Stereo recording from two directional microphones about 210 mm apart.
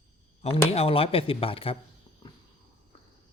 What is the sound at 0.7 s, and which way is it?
Speech, 30° left (ahead or behind).